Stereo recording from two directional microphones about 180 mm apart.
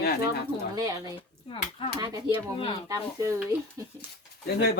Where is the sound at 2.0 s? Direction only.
20° right (ahead or behind).